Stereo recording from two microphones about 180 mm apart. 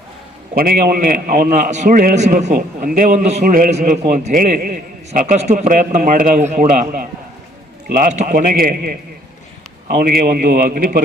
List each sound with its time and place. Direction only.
0.5 s a man's voice: 55° right (ahead or behind)